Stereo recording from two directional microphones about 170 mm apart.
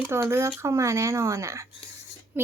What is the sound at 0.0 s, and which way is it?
Speech, 15° right (ahead or behind).